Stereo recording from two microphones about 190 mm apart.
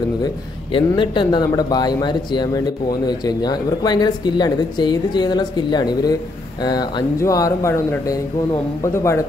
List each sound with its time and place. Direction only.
0.7 s speech: 25° left (ahead or behind)